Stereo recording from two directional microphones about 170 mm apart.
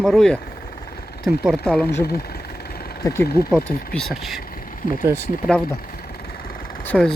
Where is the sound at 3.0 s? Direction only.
15° left (ahead or behind).